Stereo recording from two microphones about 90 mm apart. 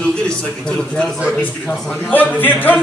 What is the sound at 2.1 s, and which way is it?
Speech, 20° left (ahead or behind).